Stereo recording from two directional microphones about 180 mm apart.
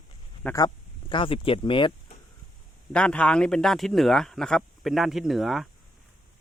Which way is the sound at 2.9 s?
5° left (ahead or behind).